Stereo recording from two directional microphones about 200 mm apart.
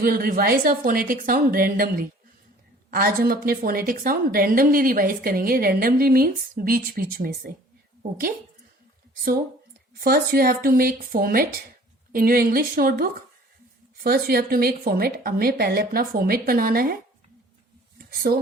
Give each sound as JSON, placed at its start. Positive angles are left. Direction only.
{"t": 0.0, "sound": "a woman's voice", "side_deg": -45}
{"t": 10.0, "sound": "a woman's voice", "side_deg": -50}
{"t": 17.9, "sound": "a sound", "side_deg": -50}